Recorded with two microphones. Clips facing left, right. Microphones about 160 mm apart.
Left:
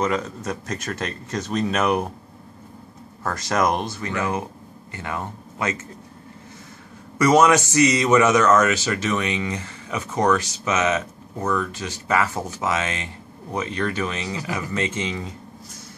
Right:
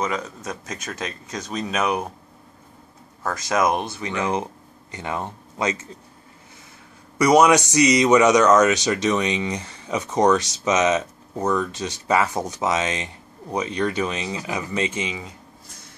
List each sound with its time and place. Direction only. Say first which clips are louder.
0.0 s speech: left 3 dB; centre (ahead or behind)
3.3 s speech: even; centre (ahead or behind)
4.0 s speech: right 1 dB; 20° right (ahead or behind)
7.2 s speech: right 1 dB; 15° right (ahead or behind)